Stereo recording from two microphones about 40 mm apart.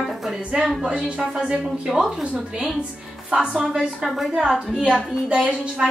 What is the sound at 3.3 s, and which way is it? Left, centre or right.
Speech, right.